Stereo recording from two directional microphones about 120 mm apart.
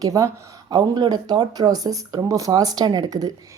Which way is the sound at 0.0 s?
30° right (ahead or behind).